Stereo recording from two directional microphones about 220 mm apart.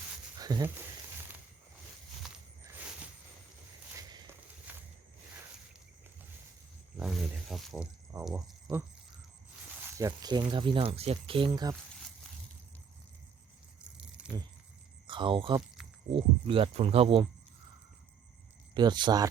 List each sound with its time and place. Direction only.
0.3 s a sound: 15° right (ahead or behind)
4.7 s walk: 10° right (ahead or behind)
6.9 s speech: centre (ahead or behind)
8.1 s speech: 15° right (ahead or behind)
10.0 s speech: 15° right (ahead or behind)
15.0 s speech: 20° right (ahead or behind)
18.7 s speech: 20° right (ahead or behind)